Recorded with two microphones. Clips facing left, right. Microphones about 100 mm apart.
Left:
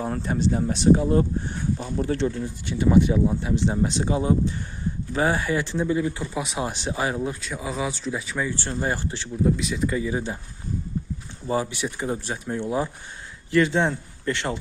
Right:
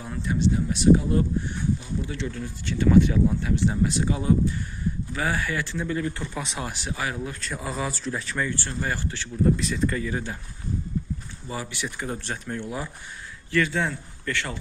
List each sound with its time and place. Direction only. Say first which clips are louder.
0.0 s speech: left 1 dB; 40° left (ahead or behind)
1.8 s speech: left 7 dB; 45° left (ahead or behind)
2.4 s speech: left 1 dB; 20° left (ahead or behind)
7.4 s speech: left 2 dB; centre (ahead or behind)
8.6 s speech: left 3 dB; 25° left (ahead or behind)
9.4 s speech: even; 5° left (ahead or behind)
11.4 s speech: left 7 dB; 25° left (ahead or behind)